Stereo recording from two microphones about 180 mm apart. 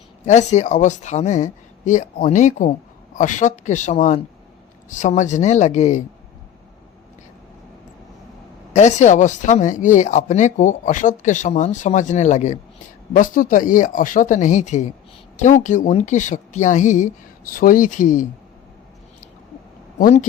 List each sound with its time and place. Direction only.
0.3 s speech: 40° left (ahead or behind)
8.7 s speech: 40° left (ahead or behind)
20.0 s speech: 50° left (ahead or behind)